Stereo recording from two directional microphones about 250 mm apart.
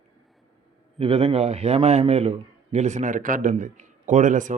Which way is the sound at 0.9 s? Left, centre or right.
Right.